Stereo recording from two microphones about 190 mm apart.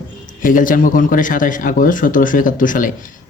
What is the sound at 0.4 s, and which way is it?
Speech, 45° left (ahead or behind).